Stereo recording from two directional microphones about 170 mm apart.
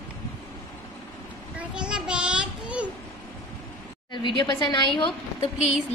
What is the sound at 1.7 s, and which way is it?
Child singing, 5° right (ahead or behind).